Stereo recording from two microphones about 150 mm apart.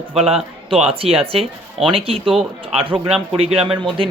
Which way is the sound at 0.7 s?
40° right (ahead or behind).